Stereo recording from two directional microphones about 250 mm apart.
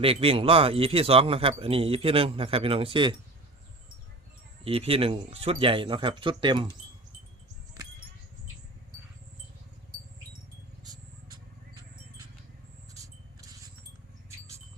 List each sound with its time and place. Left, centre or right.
0.0 s speech: right
4.6 s speech: right
13.0 s vehicle: centre